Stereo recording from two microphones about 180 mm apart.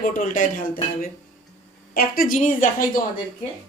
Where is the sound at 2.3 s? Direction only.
45° left (ahead or behind).